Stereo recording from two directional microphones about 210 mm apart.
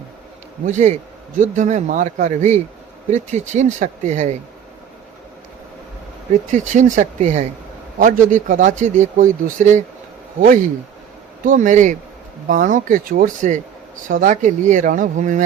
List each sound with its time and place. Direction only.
0.6 s speech: 35° right (ahead or behind)
6.9 s speech: 35° right (ahead or behind)